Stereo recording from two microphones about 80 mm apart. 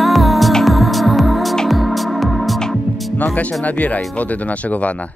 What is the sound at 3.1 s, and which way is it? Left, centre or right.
Music, centre.